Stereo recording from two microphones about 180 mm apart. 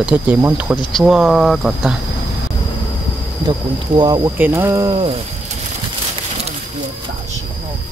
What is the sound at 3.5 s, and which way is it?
Speech, 25° right (ahead or behind).